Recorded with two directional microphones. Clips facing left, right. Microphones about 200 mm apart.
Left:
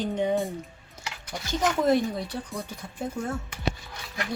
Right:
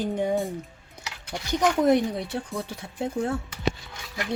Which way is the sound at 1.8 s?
20° right (ahead or behind).